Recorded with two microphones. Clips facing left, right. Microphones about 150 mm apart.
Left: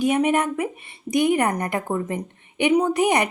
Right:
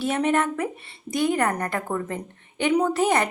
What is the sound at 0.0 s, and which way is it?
A woman's voice, 15° left (ahead or behind).